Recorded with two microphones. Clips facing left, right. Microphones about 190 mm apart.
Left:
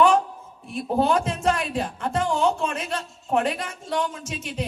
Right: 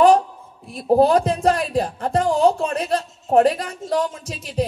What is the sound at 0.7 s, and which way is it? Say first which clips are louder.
A woman's voice: right 6 dB; 35° right (ahead or behind).